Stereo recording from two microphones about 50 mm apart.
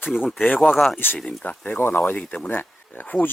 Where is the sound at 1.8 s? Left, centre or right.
Left.